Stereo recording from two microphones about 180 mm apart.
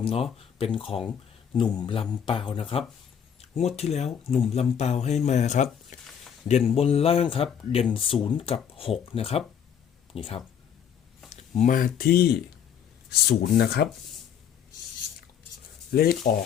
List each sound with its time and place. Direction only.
0.0 s speech: 30° left (ahead or behind)
5.9 s a sound: 40° left (ahead or behind)
6.5 s speech: 35° left (ahead or behind); by 13.8 s 60° left (ahead or behind)
15.9 s speech: 60° left (ahead or behind)